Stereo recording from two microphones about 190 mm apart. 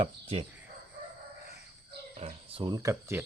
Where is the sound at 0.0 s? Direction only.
30° right (ahead or behind).